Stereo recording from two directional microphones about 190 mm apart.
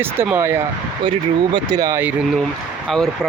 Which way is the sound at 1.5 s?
20° right (ahead or behind).